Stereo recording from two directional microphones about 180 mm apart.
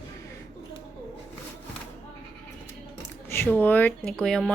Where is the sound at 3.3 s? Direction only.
10° left (ahead or behind).